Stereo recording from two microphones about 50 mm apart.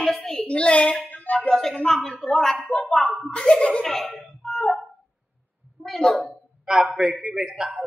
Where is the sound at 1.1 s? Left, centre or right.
Left.